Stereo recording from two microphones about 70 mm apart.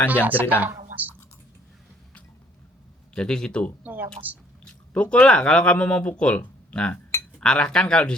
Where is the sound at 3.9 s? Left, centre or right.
Right.